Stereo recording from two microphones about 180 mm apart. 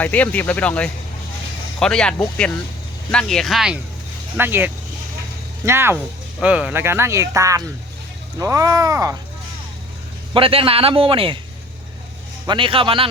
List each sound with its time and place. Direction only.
0.0 s speech: 10° left (ahead or behind); by 9.1 s 20° right (ahead or behind)
10.3 s a man's voice: 30° right (ahead or behind)
12.5 s a man's voice: 30° right (ahead or behind)